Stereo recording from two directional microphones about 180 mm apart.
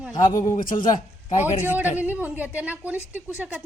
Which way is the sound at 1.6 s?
10° right (ahead or behind).